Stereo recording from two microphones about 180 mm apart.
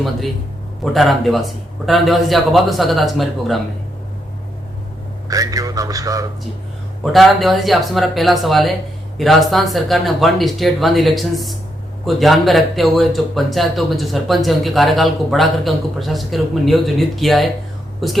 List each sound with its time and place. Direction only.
0.9 s speech: centre (ahead or behind)
5.3 s a man's voice: 20° right (ahead or behind)
7.0 s speech: centre (ahead or behind)